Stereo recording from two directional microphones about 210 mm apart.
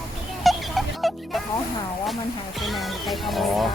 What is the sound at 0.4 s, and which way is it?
Music, centre (ahead or behind).